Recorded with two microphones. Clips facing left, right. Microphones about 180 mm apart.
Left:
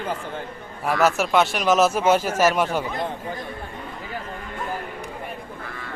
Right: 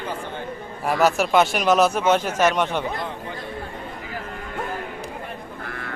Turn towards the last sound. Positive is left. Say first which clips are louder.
# right 3 dB
turn(degrees=-65)  # may be behind; listen again after turning